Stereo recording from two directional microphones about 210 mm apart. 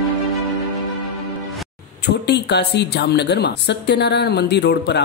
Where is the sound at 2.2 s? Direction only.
55° left (ahead or behind).